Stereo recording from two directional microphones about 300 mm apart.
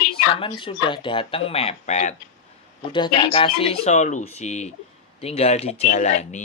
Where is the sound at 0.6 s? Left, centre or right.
Centre.